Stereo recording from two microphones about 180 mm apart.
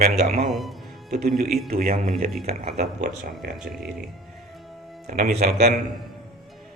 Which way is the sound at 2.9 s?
50° right (ahead or behind).